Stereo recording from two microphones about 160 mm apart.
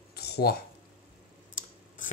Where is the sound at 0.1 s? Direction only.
80° left.